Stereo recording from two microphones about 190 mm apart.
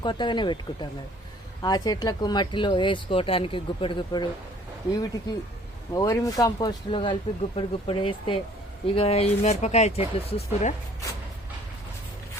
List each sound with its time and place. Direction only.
0.0 s speech: 25° left (ahead or behind)
5.9 s speech: 20° left (ahead or behind); by 10.8 s 35° left (ahead or behind)